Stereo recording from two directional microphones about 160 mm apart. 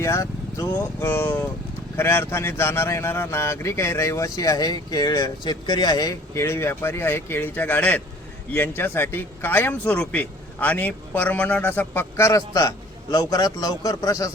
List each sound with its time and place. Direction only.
0.0 s a man's voice: 20° left (ahead or behind)